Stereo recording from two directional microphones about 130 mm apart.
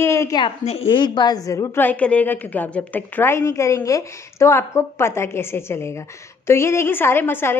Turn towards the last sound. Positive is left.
turn(degrees=15)  # may be behind; listen again after turning